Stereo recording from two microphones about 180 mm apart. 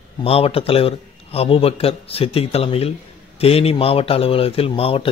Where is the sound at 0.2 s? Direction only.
35° left (ahead or behind).